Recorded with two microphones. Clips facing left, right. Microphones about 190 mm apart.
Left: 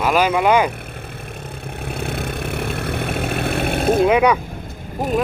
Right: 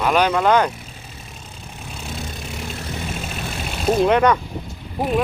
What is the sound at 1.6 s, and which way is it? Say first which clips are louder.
Vehicle: left 8 dB; 60° left (ahead or behind).